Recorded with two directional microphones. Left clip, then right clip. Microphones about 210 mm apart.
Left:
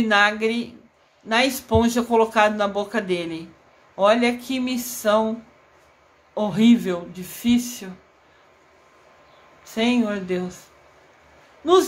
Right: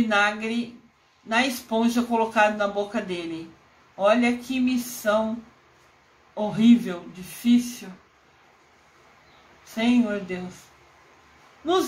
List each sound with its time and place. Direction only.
0.1 s speech: 30° left (ahead or behind)
6.3 s speech: 35° left (ahead or behind)
9.8 s speech: 30° left (ahead or behind)